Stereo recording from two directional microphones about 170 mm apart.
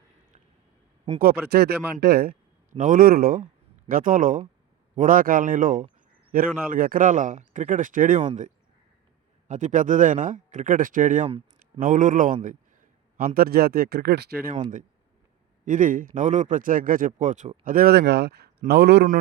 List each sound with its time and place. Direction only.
1.2 s speech: 65° right (ahead or behind)
2.7 s a man's voice: 50° right (ahead or behind); by 14.5 s 70° right (ahead or behind)
15.6 s a man's voice: 50° right (ahead or behind)
17.7 s speech: 60° right (ahead or behind)